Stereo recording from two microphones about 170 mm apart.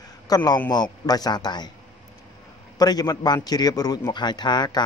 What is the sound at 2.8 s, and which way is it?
A man's voice, 20° left (ahead or behind).